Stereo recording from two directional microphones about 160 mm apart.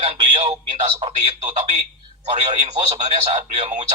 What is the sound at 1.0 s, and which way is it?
Speech, 40° right (ahead or behind).